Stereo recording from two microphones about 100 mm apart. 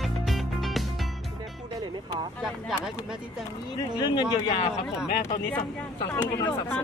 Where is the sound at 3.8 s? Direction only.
45° left (ahead or behind).